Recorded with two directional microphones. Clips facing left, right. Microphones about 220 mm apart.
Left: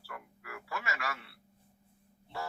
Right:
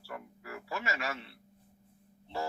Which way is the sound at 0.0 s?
25° right (ahead or behind).